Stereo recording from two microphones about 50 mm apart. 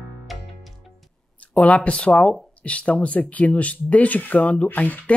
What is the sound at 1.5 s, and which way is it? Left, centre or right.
Speech, left.